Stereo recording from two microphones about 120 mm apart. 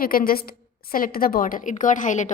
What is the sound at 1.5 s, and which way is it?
Speech, 90° left.